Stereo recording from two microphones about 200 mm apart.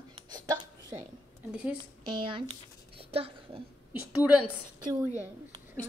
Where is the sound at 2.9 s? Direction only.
30° right (ahead or behind).